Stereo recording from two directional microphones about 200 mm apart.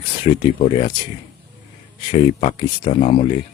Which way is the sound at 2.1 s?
30° left (ahead or behind).